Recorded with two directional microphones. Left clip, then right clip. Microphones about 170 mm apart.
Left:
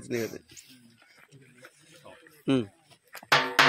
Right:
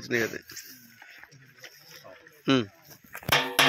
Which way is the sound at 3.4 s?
25° right (ahead or behind).